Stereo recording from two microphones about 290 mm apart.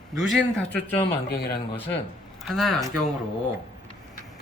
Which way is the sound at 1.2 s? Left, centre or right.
Left.